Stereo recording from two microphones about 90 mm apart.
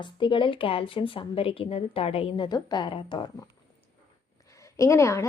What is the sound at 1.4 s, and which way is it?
A woman's voice, 90° left.